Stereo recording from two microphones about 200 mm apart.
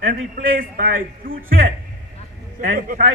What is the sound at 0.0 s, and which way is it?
A man's voice, 45° right (ahead or behind).